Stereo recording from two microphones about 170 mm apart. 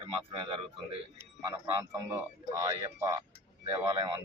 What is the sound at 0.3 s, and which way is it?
Speech, 30° right (ahead or behind).